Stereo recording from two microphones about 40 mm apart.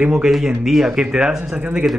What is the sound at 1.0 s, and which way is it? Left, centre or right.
Speech, right.